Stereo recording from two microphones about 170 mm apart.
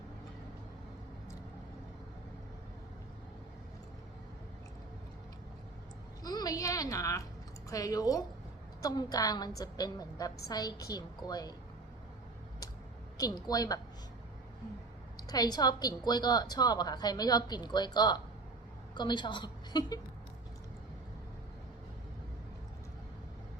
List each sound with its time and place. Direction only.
6.2 s a sound: 20° left (ahead or behind)
7.7 s a woman's voice: 20° left (ahead or behind)
13.1 s a woman's voice: 20° left (ahead or behind)
15.3 s a woman's voice: 25° left (ahead or behind)